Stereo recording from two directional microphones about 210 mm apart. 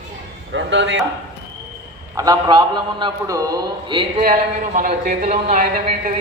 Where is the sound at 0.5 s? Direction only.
60° right (ahead or behind).